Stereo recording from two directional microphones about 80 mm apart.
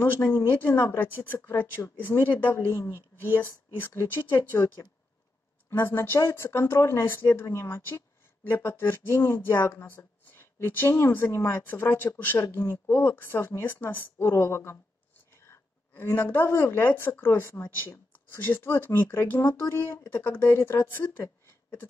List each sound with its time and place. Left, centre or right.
0.5 s speech: left
5.7 s speech: left
21.2 s a sound: left